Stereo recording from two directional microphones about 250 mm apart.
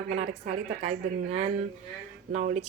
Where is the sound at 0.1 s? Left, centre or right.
Right.